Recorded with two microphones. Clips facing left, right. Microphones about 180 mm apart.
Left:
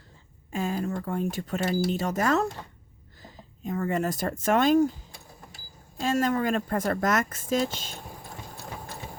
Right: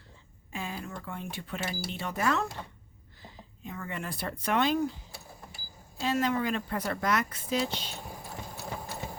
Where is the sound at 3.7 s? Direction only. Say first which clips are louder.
Left 11 dB; 45° left (ahead or behind).